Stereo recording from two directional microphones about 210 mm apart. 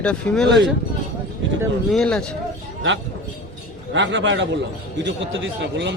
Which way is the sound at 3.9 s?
60° right (ahead or behind).